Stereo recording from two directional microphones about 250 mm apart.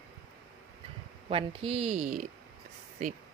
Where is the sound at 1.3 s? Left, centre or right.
Right.